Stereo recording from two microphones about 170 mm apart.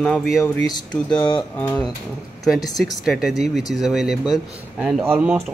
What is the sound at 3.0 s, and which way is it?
Speech, centre (ahead or behind).